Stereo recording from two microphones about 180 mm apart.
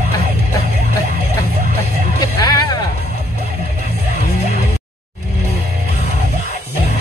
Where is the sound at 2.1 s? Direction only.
25° left (ahead or behind).